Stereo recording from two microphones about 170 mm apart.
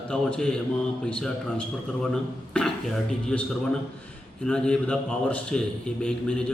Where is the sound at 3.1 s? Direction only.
5° left (ahead or behind).